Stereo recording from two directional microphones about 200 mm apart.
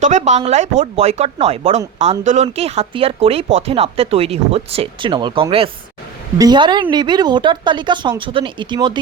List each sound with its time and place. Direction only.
0.0 s speech: 35° right (ahead or behind)